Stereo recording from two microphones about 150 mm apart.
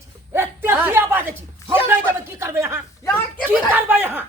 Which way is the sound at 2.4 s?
15° right (ahead or behind).